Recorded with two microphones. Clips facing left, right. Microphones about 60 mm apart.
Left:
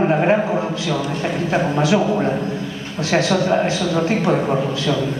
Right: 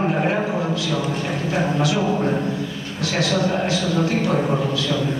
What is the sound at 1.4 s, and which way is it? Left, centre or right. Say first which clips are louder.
A man's voice: left 3 dB; left.